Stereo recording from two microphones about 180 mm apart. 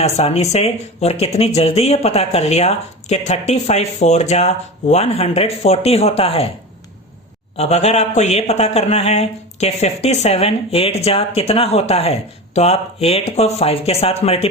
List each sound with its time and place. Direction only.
0.0 s speech: 35° left (ahead or behind)
7.5 s speech: 35° left (ahead or behind)